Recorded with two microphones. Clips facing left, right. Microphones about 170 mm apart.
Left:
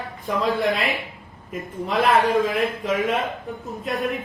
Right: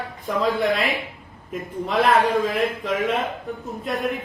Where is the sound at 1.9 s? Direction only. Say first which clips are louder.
Even; centre (ahead or behind).